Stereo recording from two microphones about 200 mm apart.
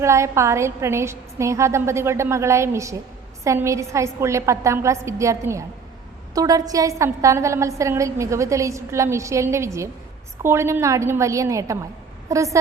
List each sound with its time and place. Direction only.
0.0 s a woman's voice: 15° right (ahead or behind)